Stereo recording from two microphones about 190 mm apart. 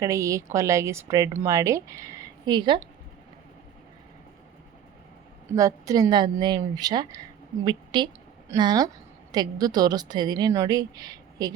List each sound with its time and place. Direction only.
0.0 s a woman's voice: 15° right (ahead or behind)
5.5 s a woman's voice: 20° right (ahead or behind)